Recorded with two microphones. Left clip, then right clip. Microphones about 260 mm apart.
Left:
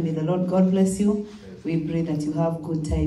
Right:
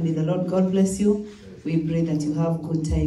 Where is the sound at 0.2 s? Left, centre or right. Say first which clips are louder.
Left 1 dB; left.